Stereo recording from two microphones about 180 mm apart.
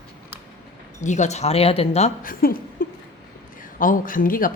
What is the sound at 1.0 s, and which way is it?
Speech, 40° left (ahead or behind).